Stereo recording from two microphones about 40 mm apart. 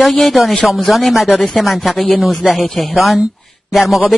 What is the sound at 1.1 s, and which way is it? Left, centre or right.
A man's voice, centre.